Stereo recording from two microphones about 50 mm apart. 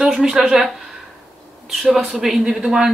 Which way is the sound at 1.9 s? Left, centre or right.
Centre.